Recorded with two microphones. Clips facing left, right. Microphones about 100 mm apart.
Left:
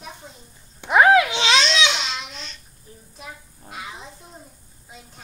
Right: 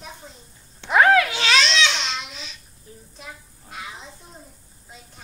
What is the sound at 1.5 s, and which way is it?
Babbling, centre (ahead or behind).